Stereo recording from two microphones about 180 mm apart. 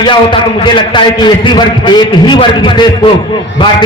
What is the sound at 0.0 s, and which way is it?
A man's voice, 25° left (ahead or behind).